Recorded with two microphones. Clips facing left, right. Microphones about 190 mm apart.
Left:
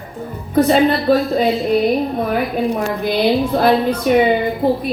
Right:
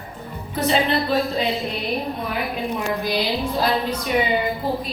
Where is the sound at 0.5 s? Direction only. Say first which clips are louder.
Left 8 dB; 50° left (ahead or behind).